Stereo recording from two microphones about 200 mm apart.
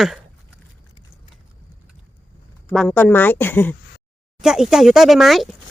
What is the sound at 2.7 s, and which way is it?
Speech, 5° left (ahead or behind).